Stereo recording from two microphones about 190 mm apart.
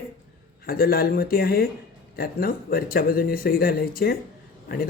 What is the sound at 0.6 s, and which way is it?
Speech, 50° left (ahead or behind).